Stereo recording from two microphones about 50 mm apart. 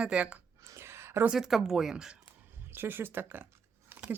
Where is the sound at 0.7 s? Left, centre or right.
Right.